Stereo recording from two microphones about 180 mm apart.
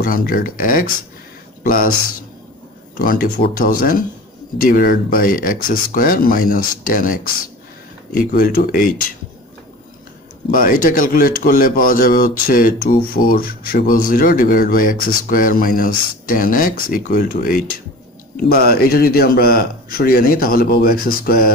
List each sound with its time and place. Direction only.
0.0 s speech: 50° left (ahead or behind)
3.0 s speech: 50° left (ahead or behind)
10.5 s speech: 50° left (ahead or behind)